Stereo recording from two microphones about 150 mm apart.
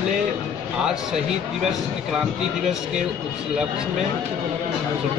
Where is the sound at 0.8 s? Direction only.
5° right (ahead or behind).